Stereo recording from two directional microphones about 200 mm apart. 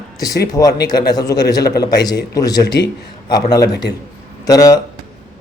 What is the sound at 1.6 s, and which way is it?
Speech, 55° left (ahead or behind).